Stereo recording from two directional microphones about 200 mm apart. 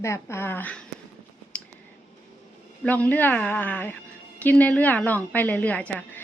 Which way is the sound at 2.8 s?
10° left (ahead or behind).